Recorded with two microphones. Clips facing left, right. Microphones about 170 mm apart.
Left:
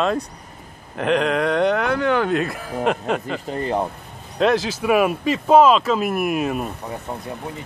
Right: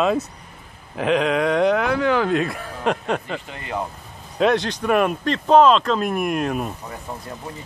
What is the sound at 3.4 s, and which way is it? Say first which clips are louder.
Speech: left 6 dB; 35° left (ahead or behind).